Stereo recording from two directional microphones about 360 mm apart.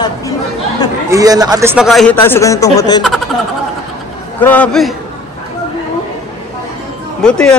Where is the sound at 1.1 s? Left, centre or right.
Centre.